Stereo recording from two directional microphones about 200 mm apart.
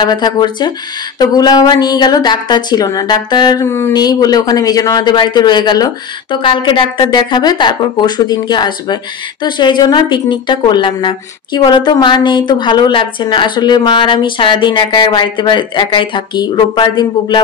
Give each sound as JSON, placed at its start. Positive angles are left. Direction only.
{"t": 0.0, "sound": "a woman's voice", "side_deg": 20}